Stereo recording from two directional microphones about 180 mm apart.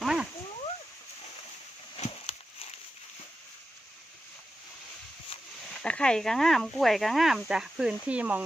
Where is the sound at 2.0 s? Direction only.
35° left (ahead or behind).